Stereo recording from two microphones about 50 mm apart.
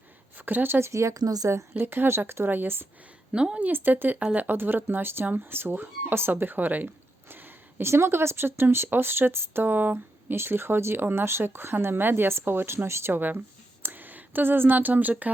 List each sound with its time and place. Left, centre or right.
0.3 s speech: right
0.9 s a woman's voice: right
1.8 s speech: right
3.3 s speech: centre
3.6 s speech: right
7.8 s speech: right
13.8 s speech: right